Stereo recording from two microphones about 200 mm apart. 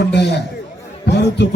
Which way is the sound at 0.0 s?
60° left (ahead or behind).